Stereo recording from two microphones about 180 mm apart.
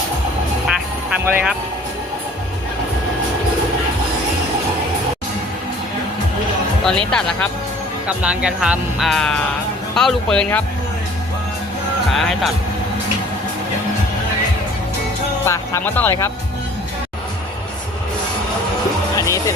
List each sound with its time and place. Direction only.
0.7 s music: 10° right (ahead or behind)
7.1 s speech: 5° left (ahead or behind)
8.0 s speech: 5° right (ahead or behind)
12.1 s speech: centre (ahead or behind)
15.4 s speech: 15° left (ahead or behind)
19.1 s music: 15° left (ahead or behind)